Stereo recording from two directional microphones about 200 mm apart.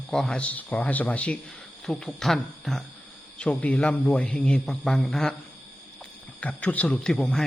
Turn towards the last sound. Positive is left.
turn(degrees=5)  # may be behind; listen again after turning